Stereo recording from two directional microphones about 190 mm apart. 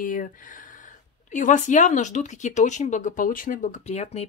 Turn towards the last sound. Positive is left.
turn(degrees=35)  # may be behind; listen again after turning